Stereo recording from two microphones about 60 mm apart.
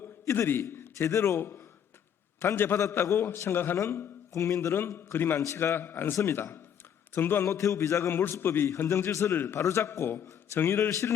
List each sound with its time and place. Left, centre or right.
0.3 s a man's voice: left
2.4 s a man's voice: left
3.8 s a man's voice: left
4.9 s a man's voice: left
7.4 s a man's voice: left
8.1 s a man's voice: left
8.9 s a man's voice: left
9.6 s a man's voice: left